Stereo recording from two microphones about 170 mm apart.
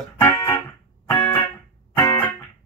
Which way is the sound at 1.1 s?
15° left (ahead or behind).